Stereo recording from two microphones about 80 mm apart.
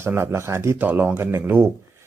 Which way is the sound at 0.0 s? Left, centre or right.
Right.